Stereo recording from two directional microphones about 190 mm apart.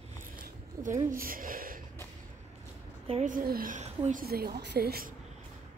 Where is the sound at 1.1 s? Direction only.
50° right (ahead or behind).